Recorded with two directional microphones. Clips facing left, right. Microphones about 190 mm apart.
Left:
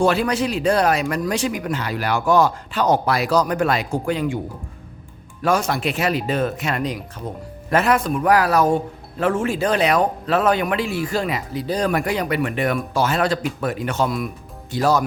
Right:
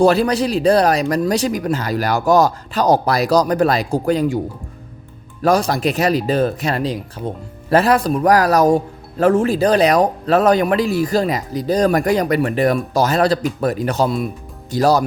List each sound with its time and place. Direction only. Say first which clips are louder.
0.0 s speech: right 5 dB; 35° right (ahead or behind)
5.4 s speech: right 4 dB; 35° right (ahead or behind)